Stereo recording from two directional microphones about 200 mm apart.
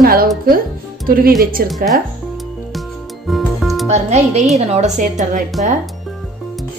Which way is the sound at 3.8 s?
35° right (ahead or behind).